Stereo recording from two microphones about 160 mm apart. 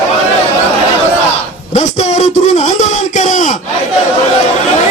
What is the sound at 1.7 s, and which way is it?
A man's voice, 45° left (ahead or behind).